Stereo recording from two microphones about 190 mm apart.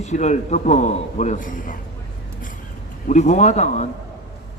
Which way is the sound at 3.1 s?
40° left (ahead or behind).